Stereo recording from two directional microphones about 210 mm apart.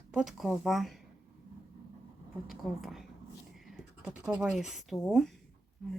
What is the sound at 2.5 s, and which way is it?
Speech, centre (ahead or behind).